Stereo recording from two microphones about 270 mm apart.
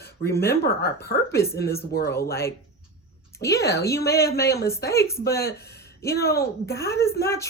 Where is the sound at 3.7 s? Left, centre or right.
Centre.